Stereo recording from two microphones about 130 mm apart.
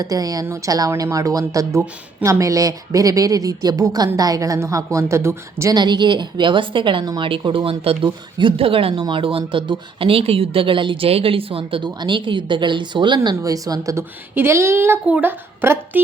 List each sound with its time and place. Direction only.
0.0 s speech: 30° right (ahead or behind)
5.7 s speech: 35° right (ahead or behind); by 16.0 s 15° right (ahead or behind)